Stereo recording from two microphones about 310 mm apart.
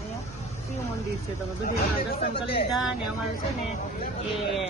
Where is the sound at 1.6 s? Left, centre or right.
Left.